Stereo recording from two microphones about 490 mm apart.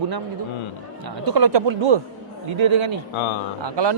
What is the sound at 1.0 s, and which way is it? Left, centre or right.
A man's voice, right.